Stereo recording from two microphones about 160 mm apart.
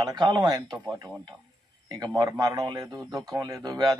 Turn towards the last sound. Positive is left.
turn(degrees=-25)  # may be behind; listen again after turning